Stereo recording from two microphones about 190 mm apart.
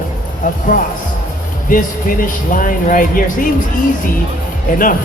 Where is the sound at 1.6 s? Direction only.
45° left (ahead or behind).